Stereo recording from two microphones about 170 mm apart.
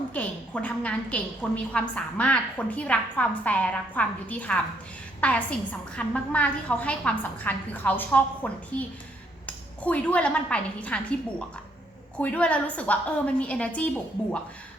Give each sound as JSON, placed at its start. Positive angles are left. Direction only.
{"t": 0.1, "sound": "a woman's voice", "side_deg": 10}